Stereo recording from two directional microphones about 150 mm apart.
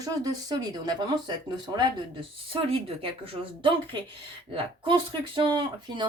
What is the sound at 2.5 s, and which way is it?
Speech, 35° right (ahead or behind).